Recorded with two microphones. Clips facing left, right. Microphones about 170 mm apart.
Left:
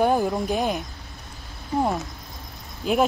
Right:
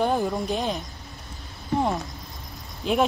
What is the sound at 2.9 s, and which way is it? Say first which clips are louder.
Speech: left 1 dB; 5° left (ahead or behind).